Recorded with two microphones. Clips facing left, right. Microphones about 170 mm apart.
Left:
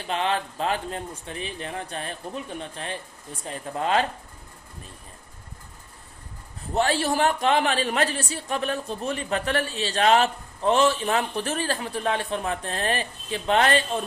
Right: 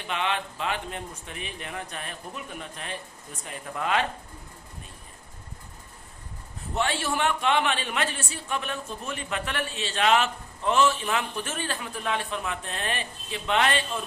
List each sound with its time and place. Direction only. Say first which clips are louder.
0.1 s speech: left 3 dB; 35° left (ahead or behind)
6.7 s speech: left 5 dB; 35° left (ahead or behind)